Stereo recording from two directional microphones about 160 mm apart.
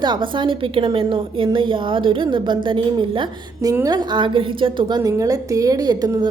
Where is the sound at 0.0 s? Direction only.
30° right (ahead or behind).